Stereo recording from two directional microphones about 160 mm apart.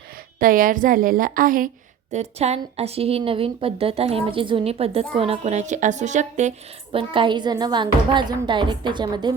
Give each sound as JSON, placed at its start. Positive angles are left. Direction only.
{"t": 0.3, "sound": "a woman's voice", "side_deg": -60}
{"t": 2.1, "sound": "a woman's voice", "side_deg": -40}
{"t": 6.9, "sound": "a woman's voice", "side_deg": -30}